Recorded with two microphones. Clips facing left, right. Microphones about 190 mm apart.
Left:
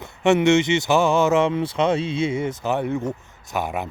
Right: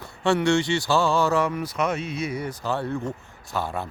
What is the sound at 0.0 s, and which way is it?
Speech, 20° left (ahead or behind).